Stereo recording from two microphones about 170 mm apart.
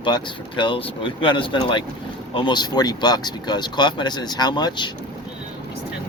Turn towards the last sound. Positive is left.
turn(degrees=25)  # may be behind; listen again after turning